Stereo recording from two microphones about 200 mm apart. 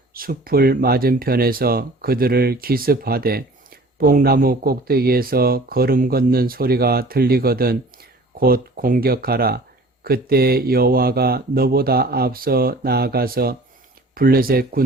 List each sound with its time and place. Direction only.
0.1 s speech: 45° right (ahead or behind)